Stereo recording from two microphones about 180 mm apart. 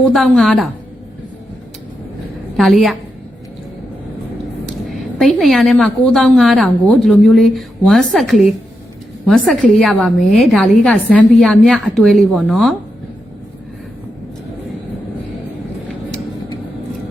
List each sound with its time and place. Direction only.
0.0 s a woman's voice: centre (ahead or behind)
2.6 s a woman's voice: centre (ahead or behind)
4.9 s a woman's voice: centre (ahead or behind)